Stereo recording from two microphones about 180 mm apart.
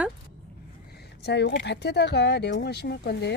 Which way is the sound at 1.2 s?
70° left (ahead or behind).